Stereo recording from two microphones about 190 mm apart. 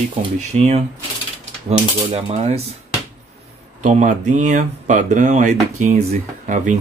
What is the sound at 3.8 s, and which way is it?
Speech, 40° right (ahead or behind).